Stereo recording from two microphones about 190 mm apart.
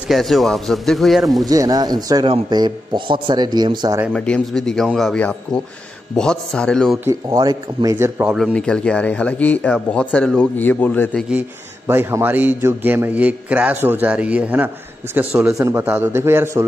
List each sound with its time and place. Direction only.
0.1 s a man's voice: centre (ahead or behind)
1.4 s speech: 20° right (ahead or behind)
4.1 s a man's voice: 5° left (ahead or behind)
7.1 s speech: 20° right (ahead or behind)
8.0 s a man's voice: 5° right (ahead or behind)
8.5 s speech: 5° left (ahead or behind)
11.9 s a man's voice: 15° right (ahead or behind)